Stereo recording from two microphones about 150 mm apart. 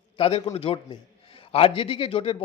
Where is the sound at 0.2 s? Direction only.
40° left (ahead or behind).